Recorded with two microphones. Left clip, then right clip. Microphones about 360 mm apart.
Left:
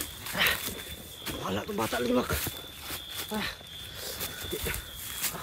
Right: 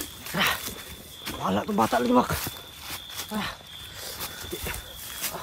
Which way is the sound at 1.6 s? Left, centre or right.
Right.